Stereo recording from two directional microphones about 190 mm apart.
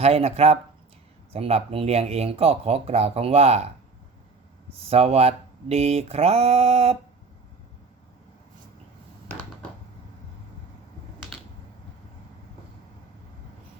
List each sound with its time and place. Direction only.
0.0 s speech: 30° right (ahead or behind)
4.9 s speech: 30° right (ahead or behind)